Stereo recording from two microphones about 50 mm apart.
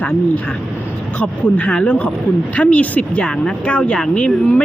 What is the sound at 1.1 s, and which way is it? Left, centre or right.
A woman's voice, left.